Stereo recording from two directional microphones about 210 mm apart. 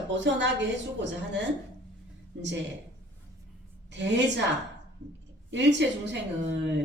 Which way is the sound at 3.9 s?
55° right (ahead or behind).